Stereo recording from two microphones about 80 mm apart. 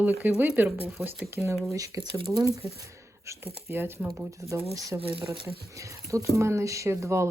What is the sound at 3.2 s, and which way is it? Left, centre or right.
Speech, right.